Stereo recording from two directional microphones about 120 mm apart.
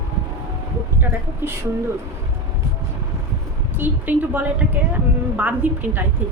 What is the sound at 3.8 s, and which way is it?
A woman's voice, 15° right (ahead or behind).